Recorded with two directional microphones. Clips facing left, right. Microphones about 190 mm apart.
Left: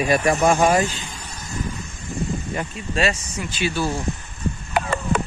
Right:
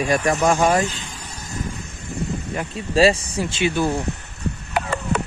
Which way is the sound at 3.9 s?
65° right (ahead or behind).